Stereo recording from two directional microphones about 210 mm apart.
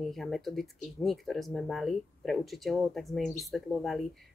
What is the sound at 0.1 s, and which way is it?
Speech, centre (ahead or behind).